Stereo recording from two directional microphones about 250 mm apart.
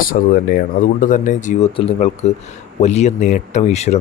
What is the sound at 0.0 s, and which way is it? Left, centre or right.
Speech, left.